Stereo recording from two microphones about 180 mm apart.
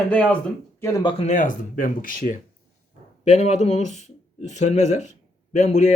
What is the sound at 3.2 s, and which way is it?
Speech, 40° left (ahead or behind).